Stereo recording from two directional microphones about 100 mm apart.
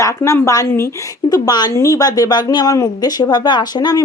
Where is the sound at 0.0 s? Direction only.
30° left (ahead or behind).